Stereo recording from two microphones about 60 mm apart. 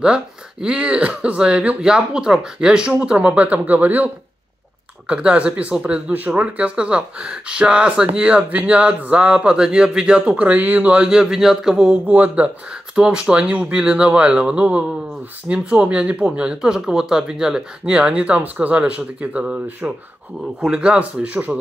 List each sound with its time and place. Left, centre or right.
0.0 s speech: centre
11.1 s speech: centre
12.1 s speech: right
12.9 s speech: centre
20.6 s speech: centre